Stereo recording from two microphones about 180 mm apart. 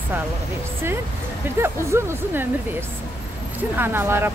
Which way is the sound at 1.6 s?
15° right (ahead or behind).